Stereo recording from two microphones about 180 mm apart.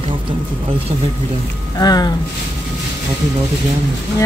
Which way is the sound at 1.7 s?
20° left (ahead or behind).